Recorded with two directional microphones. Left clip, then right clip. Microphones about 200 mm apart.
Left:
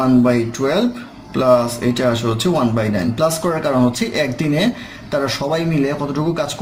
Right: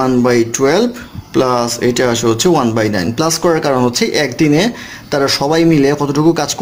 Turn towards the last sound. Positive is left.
turn(degrees=-45)  # may be behind; listen again after turning